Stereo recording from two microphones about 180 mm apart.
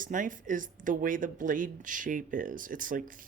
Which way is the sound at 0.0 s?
45° right (ahead or behind).